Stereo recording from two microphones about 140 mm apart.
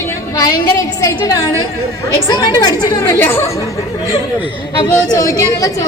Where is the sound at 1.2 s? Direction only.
25° left (ahead or behind).